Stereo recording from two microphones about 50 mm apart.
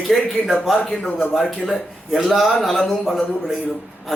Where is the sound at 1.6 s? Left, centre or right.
Centre.